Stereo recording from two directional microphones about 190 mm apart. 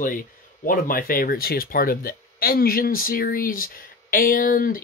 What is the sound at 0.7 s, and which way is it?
Speech, 50° left (ahead or behind).